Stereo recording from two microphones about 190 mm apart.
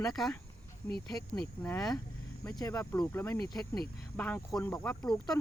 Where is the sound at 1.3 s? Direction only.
10° left (ahead or behind).